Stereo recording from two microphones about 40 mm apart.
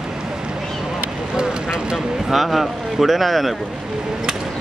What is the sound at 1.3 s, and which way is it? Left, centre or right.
Speech, right.